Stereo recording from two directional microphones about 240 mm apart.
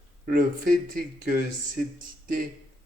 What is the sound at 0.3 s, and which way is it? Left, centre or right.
Speech, right.